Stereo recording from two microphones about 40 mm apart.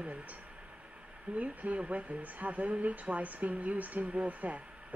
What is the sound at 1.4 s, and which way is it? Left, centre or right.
Speech, right.